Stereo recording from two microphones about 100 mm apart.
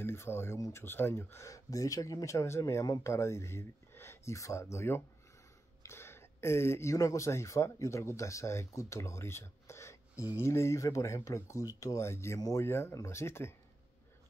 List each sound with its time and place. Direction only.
0.0 s speech: 25° left (ahead or behind)
12.4 s speech: 35° left (ahead or behind)
12.6 s speech: 25° left (ahead or behind)